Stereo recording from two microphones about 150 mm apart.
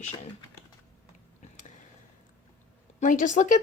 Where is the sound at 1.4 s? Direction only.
55° left (ahead or behind).